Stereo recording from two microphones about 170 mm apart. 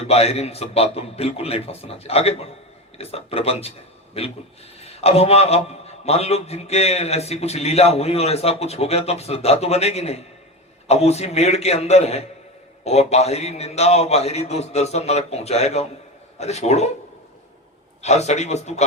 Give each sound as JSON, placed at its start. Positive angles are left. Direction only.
{"t": 0.0, "sound": "a man's voice", "side_deg": 35}
{"t": 18.0, "sound": "a man's voice", "side_deg": 40}